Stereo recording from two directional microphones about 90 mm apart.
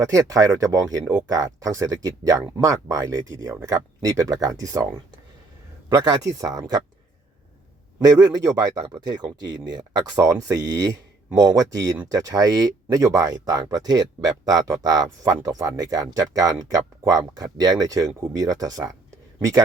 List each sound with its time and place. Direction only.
0.0 s speech: 40° right (ahead or behind)
5.9 s speech: 50° right (ahead or behind)
8.0 s speech: 45° right (ahead or behind)